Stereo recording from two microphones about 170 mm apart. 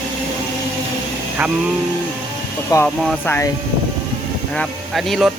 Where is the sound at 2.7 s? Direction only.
20° left (ahead or behind).